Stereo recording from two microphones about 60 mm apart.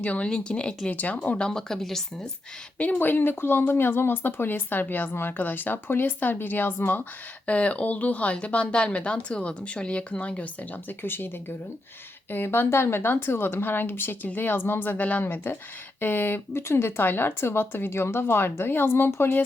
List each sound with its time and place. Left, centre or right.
0.0 s speech: centre
1.5 s speech: centre
2.7 s speech: left
7.4 s speech: left